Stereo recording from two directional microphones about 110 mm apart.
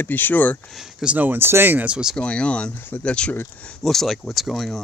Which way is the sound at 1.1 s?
20° right (ahead or behind).